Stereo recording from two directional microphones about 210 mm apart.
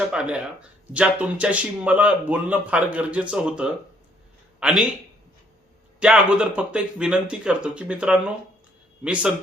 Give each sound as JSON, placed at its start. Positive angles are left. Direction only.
{"t": 0.1, "sound": "speech", "side_deg": -5}
{"t": 6.0, "sound": "speech", "side_deg": -5}